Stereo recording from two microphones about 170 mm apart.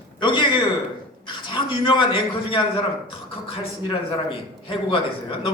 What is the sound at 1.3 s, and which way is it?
A man's voice, 30° left (ahead or behind).